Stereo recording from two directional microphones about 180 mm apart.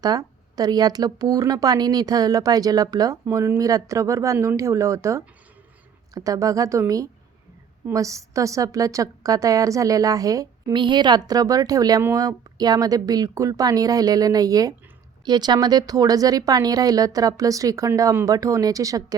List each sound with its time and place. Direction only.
0.0 s a woman's voice: 20° right (ahead or behind)